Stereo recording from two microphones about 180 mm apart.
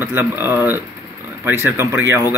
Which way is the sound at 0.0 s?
10° right (ahead or behind).